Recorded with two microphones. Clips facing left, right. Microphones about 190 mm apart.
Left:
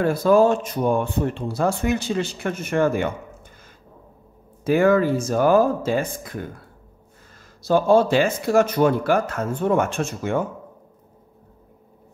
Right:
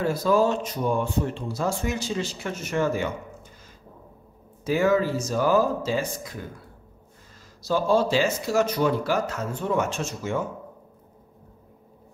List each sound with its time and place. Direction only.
0.0 s speech: 55° left (ahead or behind)
4.6 s speech: 55° left (ahead or behind)
7.6 s speech: 55° left (ahead or behind)